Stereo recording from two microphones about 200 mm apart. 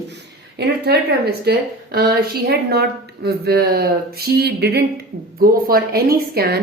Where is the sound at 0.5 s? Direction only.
55° right (ahead or behind).